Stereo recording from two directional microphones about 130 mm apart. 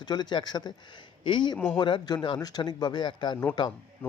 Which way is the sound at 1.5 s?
10° left (ahead or behind).